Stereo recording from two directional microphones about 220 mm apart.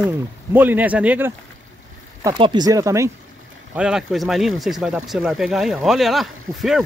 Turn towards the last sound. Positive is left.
turn(degrees=0)  # may be behind; listen again after turning